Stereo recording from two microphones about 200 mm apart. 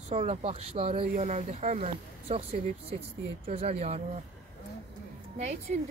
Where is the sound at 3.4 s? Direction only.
30° right (ahead or behind).